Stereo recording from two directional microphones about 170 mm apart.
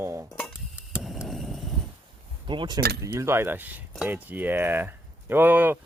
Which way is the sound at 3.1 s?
15° right (ahead or behind).